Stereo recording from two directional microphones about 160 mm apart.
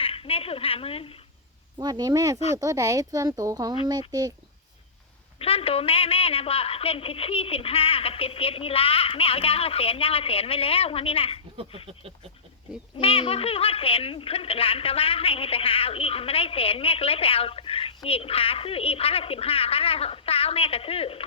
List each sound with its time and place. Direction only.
0.0 s a woman's voice: 35° left (ahead or behind)
1.8 s speech: 25° right (ahead or behind)
5.4 s speech: 35° left (ahead or behind)
13.0 s speech: 35° left (ahead or behind)